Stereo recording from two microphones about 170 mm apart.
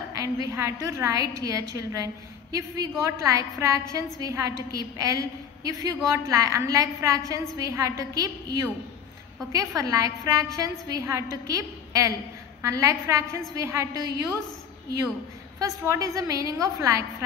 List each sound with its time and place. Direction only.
0.1 s a woman's voice: 20° right (ahead or behind)
15.6 s a woman's voice: 20° right (ahead or behind)